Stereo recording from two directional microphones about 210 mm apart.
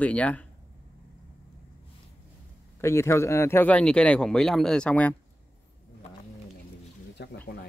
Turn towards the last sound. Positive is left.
turn(degrees=55)  # may be behind; listen again after turning